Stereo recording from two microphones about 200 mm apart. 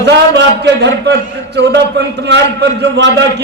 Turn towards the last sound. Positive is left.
turn(degrees=-60)  # may be behind; listen again after turning